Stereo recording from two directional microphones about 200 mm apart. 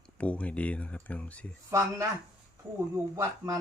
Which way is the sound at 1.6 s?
15° right (ahead or behind).